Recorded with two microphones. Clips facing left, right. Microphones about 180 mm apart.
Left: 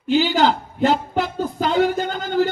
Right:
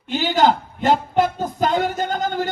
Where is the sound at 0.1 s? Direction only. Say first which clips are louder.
Left 1 dB; 50° right (ahead or behind).